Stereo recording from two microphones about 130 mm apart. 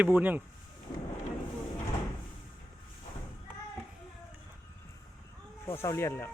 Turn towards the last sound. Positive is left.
turn(degrees=20)  # may be behind; listen again after turning